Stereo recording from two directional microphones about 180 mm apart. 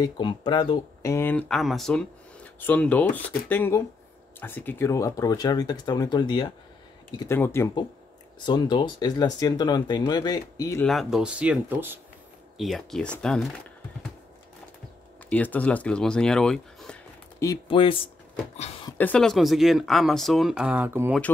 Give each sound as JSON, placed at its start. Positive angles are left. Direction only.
{"t": 0.0, "sound": "speech", "side_deg": 25}
{"t": 1.1, "sound": "speech", "side_deg": 10}
{"t": 1.5, "sound": "speech", "side_deg": 0}
{"t": 7.2, "sound": "speech", "side_deg": 15}
{"t": 8.5, "sound": "speech", "side_deg": 25}
{"t": 10.8, "sound": "speech", "side_deg": 0}
{"t": 12.5, "sound": "speech", "side_deg": 0}
{"t": 15.2, "sound": "speech", "side_deg": 10}
{"t": 17.4, "sound": "speech", "side_deg": 25}
{"t": 18.9, "sound": "speech", "side_deg": 5}